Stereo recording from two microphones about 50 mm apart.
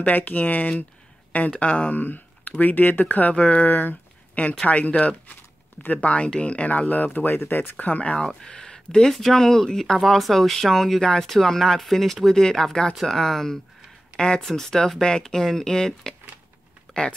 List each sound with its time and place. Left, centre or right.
0.0 s speech: left
7.7 s speech: left
8.2 s speech: centre
16.9 s a sound: centre